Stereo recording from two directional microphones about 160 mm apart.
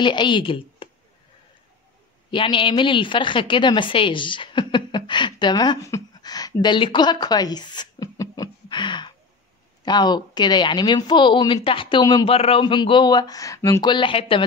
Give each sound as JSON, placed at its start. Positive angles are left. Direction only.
{"t": 0.0, "sound": "a woman's voice", "side_deg": 30}
{"t": 2.3, "sound": "a woman's voice", "side_deg": 30}
{"t": 12.3, "sound": "speech", "side_deg": 35}